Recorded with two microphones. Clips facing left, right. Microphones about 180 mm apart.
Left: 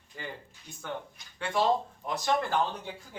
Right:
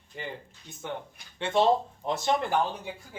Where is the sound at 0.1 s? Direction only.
20° right (ahead or behind).